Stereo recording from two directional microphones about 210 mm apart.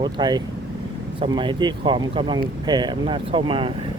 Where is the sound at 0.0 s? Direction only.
20° right (ahead or behind).